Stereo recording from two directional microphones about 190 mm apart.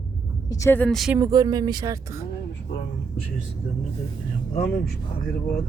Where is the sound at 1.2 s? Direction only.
15° right (ahead or behind).